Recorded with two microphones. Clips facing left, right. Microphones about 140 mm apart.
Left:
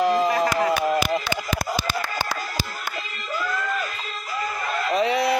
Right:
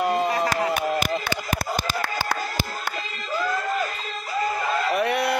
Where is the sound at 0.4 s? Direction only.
60° left (ahead or behind).